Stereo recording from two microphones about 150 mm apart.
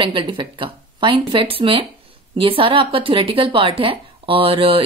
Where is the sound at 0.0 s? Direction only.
35° right (ahead or behind).